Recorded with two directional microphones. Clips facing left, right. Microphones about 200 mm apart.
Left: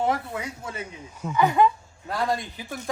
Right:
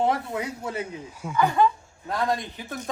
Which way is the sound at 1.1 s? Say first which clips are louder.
Left 2 dB; 10° right (ahead or behind).